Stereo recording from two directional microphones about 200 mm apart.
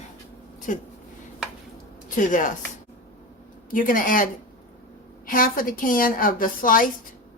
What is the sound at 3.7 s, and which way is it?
A woman's voice, 45° left (ahead or behind).